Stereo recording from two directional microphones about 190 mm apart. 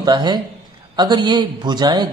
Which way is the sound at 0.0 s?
20° right (ahead or behind).